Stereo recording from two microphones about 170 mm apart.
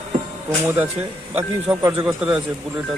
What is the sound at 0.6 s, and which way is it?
Speech, 10° right (ahead or behind).